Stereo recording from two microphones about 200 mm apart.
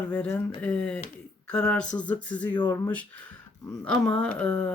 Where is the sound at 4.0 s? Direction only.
5° left (ahead or behind).